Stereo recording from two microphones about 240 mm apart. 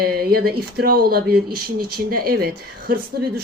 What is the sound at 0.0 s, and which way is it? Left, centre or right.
A woman's voice, right.